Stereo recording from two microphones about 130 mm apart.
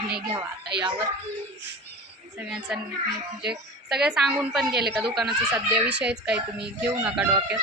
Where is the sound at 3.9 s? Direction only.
5° right (ahead or behind).